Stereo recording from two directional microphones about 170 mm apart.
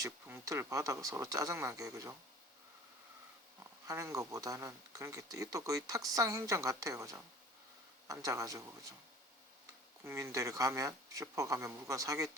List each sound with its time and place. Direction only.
0.0 s speech: 20° right (ahead or behind)
3.8 s speech: 20° right (ahead or behind)
10.0 s speech: 15° right (ahead or behind)